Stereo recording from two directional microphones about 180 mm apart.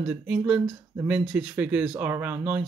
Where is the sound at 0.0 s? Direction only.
5° right (ahead or behind).